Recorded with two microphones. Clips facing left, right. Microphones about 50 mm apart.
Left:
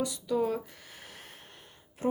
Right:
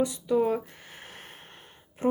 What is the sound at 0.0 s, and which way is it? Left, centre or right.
Speech, right.